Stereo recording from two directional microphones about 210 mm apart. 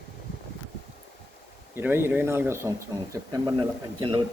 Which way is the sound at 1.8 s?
10° right (ahead or behind).